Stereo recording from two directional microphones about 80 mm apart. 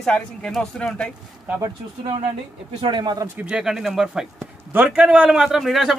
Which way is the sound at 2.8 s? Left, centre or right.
Right.